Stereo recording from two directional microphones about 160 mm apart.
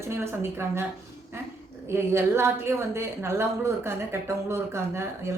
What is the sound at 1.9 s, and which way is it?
A woman's voice, 15° right (ahead or behind).